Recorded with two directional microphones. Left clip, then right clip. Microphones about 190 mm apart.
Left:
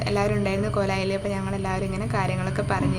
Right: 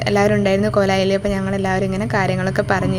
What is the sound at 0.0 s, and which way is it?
Speech, 40° right (ahead or behind).